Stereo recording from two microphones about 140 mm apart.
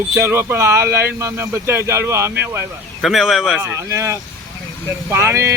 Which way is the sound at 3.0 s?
Centre (ahead or behind).